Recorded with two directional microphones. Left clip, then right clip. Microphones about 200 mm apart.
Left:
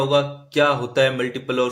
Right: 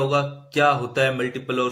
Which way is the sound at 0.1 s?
15° left (ahead or behind).